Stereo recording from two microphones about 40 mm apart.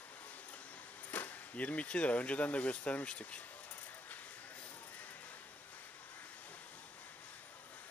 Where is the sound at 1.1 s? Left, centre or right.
Left.